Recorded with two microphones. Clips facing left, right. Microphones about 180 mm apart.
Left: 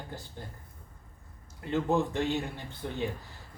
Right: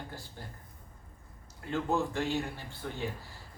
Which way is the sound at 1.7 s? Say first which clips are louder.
Left 3 dB; 20° left (ahead or behind).